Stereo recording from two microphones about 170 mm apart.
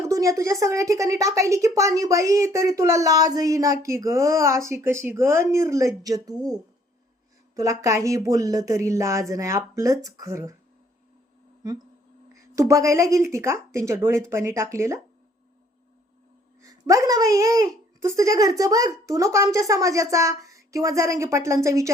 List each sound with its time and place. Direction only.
0.0 s a woman's voice: 20° right (ahead or behind)
11.6 s a woman's voice: 20° right (ahead or behind)
16.6 s a woman's voice: 20° right (ahead or behind)